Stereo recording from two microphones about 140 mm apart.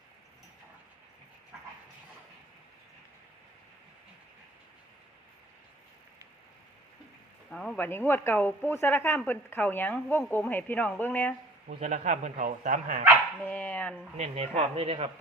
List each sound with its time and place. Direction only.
7.5 s speech: 5° left (ahead or behind)
7.9 s speech: 15° left (ahead or behind)
11.7 s speech: 55° right (ahead or behind)
13.4 s speech: 15° left (ahead or behind)
14.2 s speech: 50° right (ahead or behind)